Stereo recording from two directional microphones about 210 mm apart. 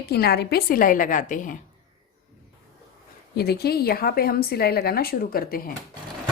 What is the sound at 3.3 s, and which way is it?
A woman's voice, 50° left (ahead or behind).